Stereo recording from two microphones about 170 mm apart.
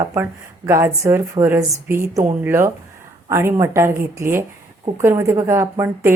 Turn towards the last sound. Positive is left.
turn(degrees=-15)  # may be behind; listen again after turning